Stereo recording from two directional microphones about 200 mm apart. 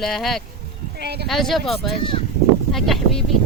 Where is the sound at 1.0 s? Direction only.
55° right (ahead or behind).